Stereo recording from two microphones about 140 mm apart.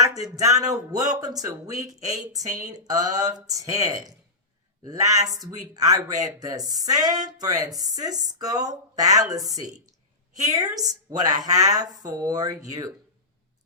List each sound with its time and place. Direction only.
0.0 s speech: 25° right (ahead or behind)
10.4 s speech: 25° right (ahead or behind)